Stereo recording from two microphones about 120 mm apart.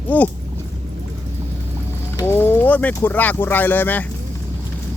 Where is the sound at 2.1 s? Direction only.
20° left (ahead or behind).